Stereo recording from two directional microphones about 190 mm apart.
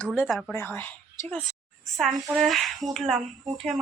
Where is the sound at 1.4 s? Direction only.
Centre (ahead or behind).